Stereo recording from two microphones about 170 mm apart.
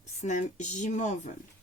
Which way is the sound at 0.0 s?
45° left (ahead or behind).